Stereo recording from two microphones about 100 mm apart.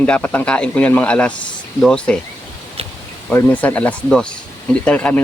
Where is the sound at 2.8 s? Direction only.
75° right (ahead or behind).